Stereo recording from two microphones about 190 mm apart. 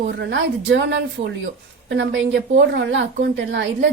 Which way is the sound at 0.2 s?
70° right (ahead or behind).